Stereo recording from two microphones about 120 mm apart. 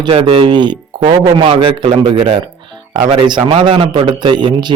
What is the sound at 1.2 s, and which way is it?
A man's voice, 50° right (ahead or behind).